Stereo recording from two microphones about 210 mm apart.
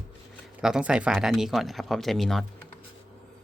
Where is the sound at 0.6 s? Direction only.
5° right (ahead or behind).